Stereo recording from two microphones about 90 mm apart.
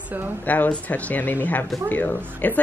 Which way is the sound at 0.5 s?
15° left (ahead or behind).